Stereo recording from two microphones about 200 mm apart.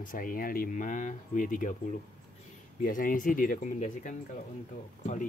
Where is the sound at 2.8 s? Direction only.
45° left (ahead or behind).